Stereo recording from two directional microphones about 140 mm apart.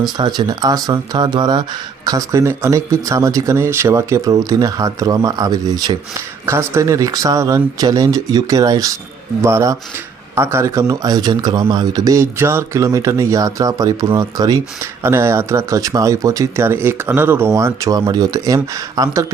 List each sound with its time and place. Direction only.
0.2 s speech: 30° right (ahead or behind)